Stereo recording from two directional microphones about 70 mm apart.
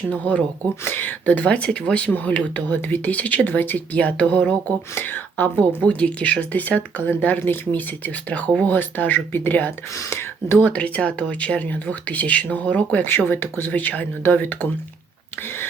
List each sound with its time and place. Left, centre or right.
0.1 s speech: centre
4.9 s speech: left
9.9 s speech: left
10.7 s speech: left